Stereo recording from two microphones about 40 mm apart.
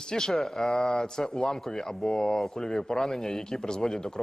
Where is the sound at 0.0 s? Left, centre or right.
Centre.